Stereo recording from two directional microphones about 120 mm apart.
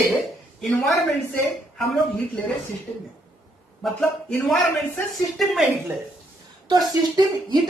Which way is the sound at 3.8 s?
5° left (ahead or behind).